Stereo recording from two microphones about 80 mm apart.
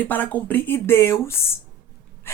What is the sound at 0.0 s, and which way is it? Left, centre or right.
Speech, left.